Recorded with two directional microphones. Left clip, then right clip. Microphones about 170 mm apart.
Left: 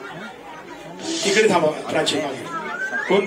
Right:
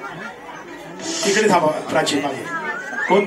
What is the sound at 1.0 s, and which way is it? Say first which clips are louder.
Speech: even; 25° left (ahead or behind).